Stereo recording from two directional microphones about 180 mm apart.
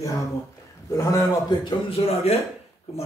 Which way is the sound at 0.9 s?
15° left (ahead or behind).